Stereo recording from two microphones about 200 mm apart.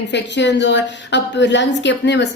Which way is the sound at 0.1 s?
60° left (ahead or behind).